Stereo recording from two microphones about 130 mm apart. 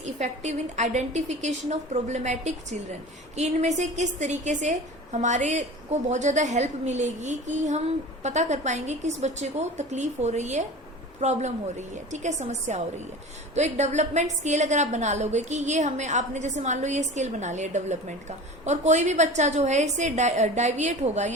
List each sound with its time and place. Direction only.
0.0 s a woman's voice: 65° right (ahead or behind)